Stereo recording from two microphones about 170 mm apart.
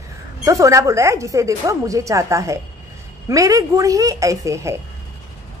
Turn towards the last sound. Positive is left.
turn(degrees=-15)  # may be behind; listen again after turning